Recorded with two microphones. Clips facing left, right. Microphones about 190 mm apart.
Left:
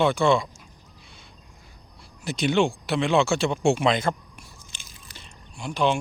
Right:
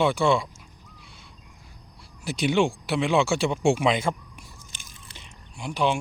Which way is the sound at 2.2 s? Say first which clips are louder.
Even; 10° right (ahead or behind).